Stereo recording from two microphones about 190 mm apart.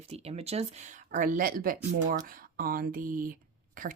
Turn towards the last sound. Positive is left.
turn(degrees=-45)  # may be behind; listen again after turning